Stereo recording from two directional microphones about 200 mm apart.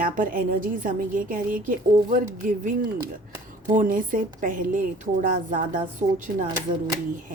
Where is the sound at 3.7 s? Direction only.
40° right (ahead or behind).